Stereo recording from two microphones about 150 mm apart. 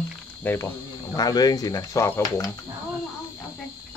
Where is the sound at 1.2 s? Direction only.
25° left (ahead or behind).